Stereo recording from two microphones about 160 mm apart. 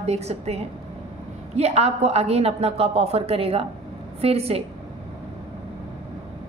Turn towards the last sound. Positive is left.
turn(degrees=-40)  # may be behind; listen again after turning